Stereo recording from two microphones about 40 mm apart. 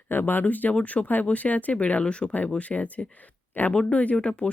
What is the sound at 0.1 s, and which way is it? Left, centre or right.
Speech, left.